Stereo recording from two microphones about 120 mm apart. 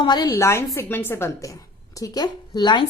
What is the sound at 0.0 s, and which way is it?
A woman's voice, 35° left (ahead or behind).